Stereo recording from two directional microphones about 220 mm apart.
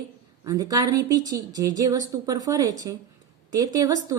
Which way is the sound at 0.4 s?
15° right (ahead or behind).